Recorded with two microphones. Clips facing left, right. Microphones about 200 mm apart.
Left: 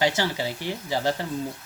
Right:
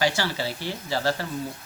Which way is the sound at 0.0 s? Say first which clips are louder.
Left 1 dB; 20° left (ahead or behind).